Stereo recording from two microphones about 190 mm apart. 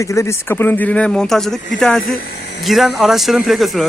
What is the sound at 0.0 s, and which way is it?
Speech, 15° left (ahead or behind).